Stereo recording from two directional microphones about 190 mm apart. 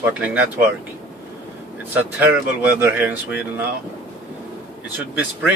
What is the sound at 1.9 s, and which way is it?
Speech, 10° right (ahead or behind).